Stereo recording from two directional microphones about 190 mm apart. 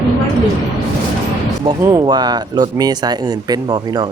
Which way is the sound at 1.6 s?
15° right (ahead or behind).